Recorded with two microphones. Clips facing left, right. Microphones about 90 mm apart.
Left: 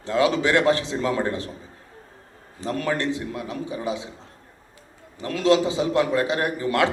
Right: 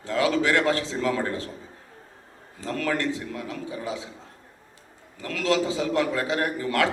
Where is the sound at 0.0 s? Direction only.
20° left (ahead or behind).